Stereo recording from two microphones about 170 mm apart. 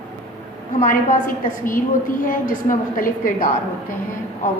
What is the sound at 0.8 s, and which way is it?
A woman's voice, 50° left (ahead or behind).